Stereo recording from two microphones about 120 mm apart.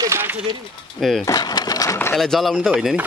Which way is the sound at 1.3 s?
35° left (ahead or behind).